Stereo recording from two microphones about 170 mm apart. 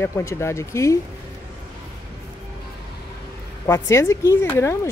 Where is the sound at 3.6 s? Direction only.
15° left (ahead or behind).